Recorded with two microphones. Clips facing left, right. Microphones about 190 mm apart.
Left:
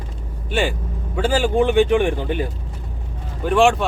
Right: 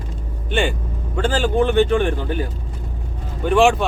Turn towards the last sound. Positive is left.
turn(degrees=0)  # may be behind; listen again after turning